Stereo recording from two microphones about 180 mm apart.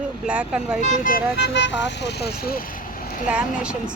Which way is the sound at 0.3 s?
5° right (ahead or behind).